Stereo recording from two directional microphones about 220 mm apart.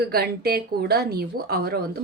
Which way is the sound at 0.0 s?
45° right (ahead or behind).